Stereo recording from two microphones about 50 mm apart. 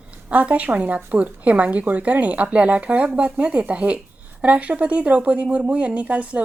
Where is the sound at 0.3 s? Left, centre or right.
Right.